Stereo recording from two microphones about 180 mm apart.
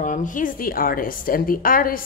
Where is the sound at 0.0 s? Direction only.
45° left (ahead or behind).